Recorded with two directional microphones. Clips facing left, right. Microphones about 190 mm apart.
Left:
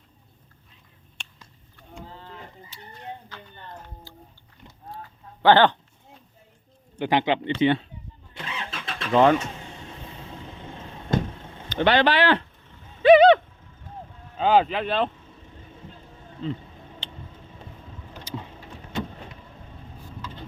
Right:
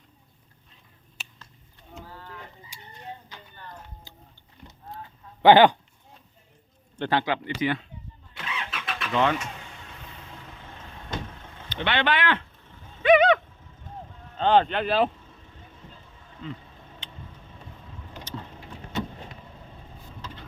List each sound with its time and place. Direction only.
1.2 s a sound: 5° right (ahead or behind)
2.0 s a sound: 25° left (ahead or behind)
2.7 s speech: 10° right (ahead or behind)
4.1 s livestock: 20° right (ahead or behind)
4.9 s honk: 20° right (ahead or behind)
6.9 s a man's voice: 15° left (ahead or behind)
8.3 s vehicle: 30° left (ahead or behind)
9.1 s speech: 40° left (ahead or behind)
11.7 s speech: 40° left (ahead or behind)
13.0 s a sound: 30° left (ahead or behind)
14.3 s speech: 5° left (ahead or behind)
16.4 s speech: 30° left (ahead or behind)
17.0 s a sound: 30° left (ahead or behind)
18.3 s vehicle: 10° left (ahead or behind)